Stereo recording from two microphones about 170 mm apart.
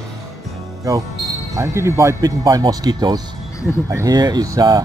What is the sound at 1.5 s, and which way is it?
Speech, 15° right (ahead or behind).